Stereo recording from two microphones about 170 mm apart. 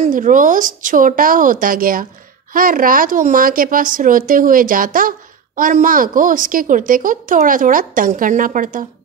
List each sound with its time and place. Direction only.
0.0 s a woman's voice: 50° right (ahead or behind)